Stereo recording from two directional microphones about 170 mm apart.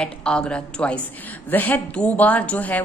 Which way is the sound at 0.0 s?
5° left (ahead or behind).